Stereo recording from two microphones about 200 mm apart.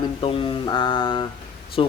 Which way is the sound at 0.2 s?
25° left (ahead or behind).